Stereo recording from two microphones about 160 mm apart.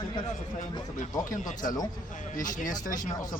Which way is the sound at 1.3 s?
55° left (ahead or behind).